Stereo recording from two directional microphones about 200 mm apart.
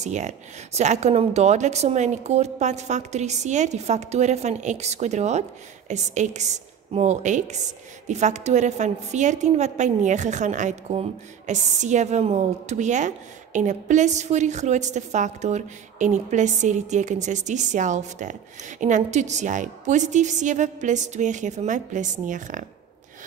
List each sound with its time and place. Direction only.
0.0 s a woman's voice: 35° right (ahead or behind)